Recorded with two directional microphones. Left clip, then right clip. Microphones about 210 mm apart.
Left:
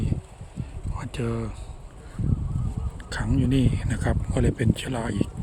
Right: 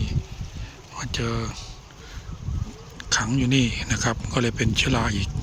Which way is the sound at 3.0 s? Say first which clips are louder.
Right 5 dB; centre (ahead or behind).